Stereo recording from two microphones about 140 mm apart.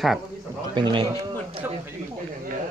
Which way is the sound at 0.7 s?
35° right (ahead or behind).